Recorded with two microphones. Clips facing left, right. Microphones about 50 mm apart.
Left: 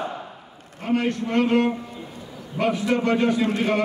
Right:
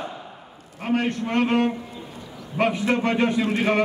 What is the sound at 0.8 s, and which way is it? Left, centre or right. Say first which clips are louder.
Speech: left 1 dB; right.